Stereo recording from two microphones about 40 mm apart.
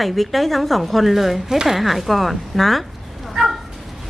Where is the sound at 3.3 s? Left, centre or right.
Centre.